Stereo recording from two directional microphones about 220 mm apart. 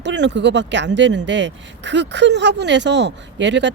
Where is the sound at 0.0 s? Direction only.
55° right (ahead or behind).